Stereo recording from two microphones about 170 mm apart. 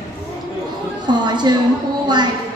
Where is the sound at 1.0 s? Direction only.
25° right (ahead or behind).